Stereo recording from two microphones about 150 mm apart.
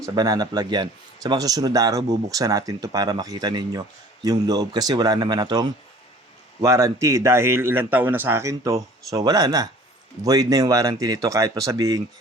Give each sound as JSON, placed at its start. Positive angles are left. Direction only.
{"t": 0.0, "sound": "speech", "side_deg": -25}